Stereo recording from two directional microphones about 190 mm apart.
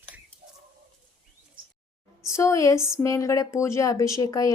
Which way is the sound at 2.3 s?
15° left (ahead or behind).